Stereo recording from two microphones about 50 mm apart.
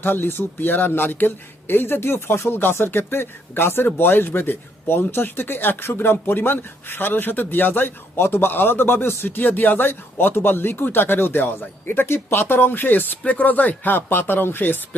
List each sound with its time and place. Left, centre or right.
0.0 s a man's voice: left